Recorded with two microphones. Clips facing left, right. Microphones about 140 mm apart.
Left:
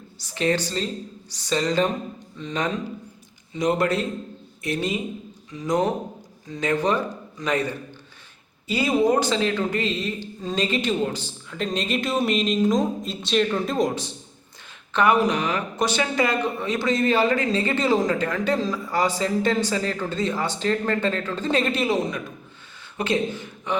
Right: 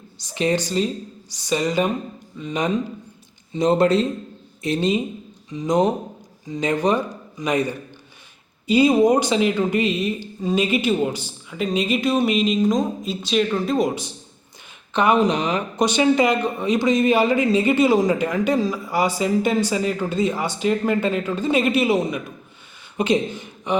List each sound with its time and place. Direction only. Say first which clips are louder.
0.3 s speech: right 3 dB; 15° right (ahead or behind)
3.5 s a man's voice: right 5 dB; 30° right (ahead or behind); by 14.1 s 10° right (ahead or behind)
14.9 s a man's voice: right 2 dB; 20° right (ahead or behind)